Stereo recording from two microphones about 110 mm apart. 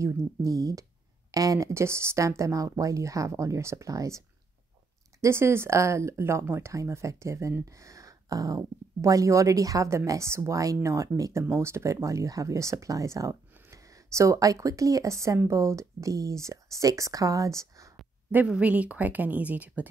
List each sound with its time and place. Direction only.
0.0 s speech: 30° right (ahead or behind)
5.2 s speech: 25° right (ahead or behind)
18.3 s speech: 10° right (ahead or behind)